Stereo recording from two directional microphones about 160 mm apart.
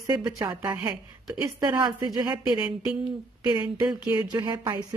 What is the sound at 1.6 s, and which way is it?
Speech, 25° right (ahead or behind).